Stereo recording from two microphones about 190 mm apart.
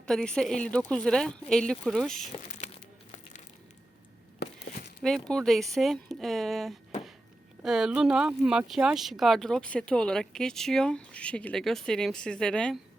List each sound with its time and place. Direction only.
0.0 s speech: 5° left (ahead or behind)
2.6 s crushing: 35° left (ahead or behind)
5.0 s speech: centre (ahead or behind)